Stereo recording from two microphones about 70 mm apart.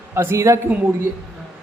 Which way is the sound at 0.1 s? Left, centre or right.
Right.